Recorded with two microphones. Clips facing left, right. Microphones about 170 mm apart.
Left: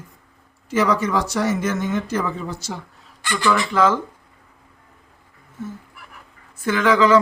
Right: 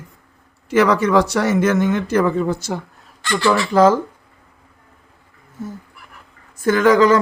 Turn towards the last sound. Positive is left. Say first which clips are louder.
# right 3 dB
turn(degrees=-45)  # may be behind; listen again after turning